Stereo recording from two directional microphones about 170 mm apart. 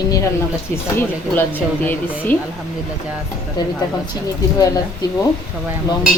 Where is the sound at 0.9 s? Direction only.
10° left (ahead or behind).